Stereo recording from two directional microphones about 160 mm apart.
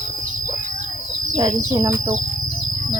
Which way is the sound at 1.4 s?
25° right (ahead or behind).